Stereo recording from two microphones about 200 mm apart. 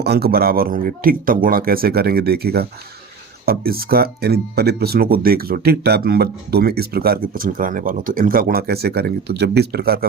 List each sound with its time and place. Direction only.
0.0 s speech: 50° right (ahead or behind)